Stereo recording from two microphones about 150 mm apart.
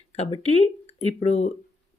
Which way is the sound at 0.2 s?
45° left (ahead or behind).